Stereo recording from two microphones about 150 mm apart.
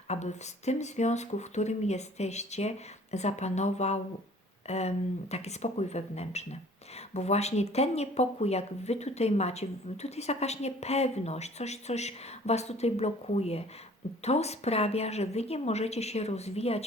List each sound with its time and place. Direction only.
0.1 s speech: 50° left (ahead or behind)